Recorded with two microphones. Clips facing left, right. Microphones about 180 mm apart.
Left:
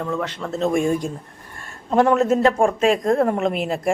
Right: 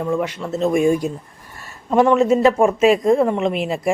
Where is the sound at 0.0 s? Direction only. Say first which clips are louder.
Right 4 dB; 10° right (ahead or behind).